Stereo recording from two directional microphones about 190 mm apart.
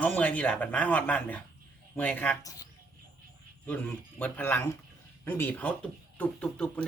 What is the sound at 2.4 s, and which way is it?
Speech, 20° left (ahead or behind).